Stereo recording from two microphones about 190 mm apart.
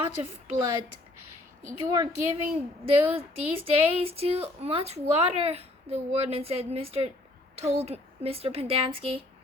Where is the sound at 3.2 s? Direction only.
30° right (ahead or behind).